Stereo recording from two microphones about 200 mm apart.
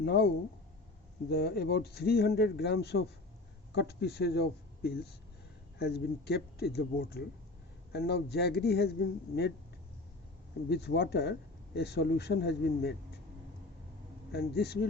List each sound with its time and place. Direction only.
0.0 s speech: 55° left (ahead or behind)
1.3 s speech: 50° left (ahead or behind)
10.7 s speech: 55° left (ahead or behind)
14.3 s speech: 55° left (ahead or behind)